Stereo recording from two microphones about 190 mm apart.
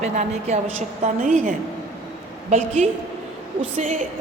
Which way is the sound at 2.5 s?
35° right (ahead or behind).